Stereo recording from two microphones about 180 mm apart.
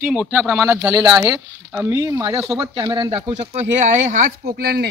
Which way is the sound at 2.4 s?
Centre (ahead or behind).